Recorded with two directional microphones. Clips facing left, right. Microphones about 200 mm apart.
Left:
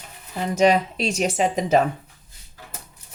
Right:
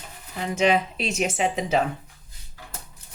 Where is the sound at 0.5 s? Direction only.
40° left (ahead or behind).